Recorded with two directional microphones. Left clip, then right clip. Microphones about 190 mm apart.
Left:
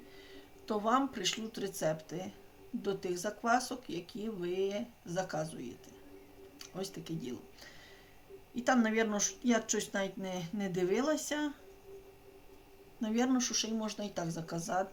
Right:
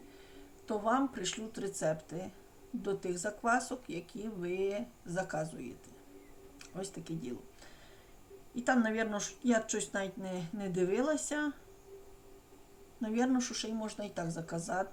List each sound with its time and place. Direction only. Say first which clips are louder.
0.7 s speech: left 1 dB; 15° left (ahead or behind)
8.5 s speech: left 1 dB; 20° left (ahead or behind)
13.0 s speech: even; 15° left (ahead or behind)